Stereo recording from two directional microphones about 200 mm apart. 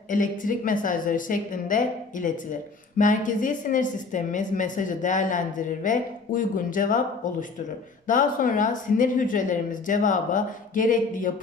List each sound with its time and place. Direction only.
0.1 s a woman's voice: 40° left (ahead or behind)
8.0 s a woman's voice: 40° left (ahead or behind)